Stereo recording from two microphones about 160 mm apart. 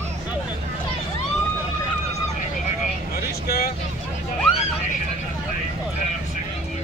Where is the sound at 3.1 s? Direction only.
70° left (ahead or behind).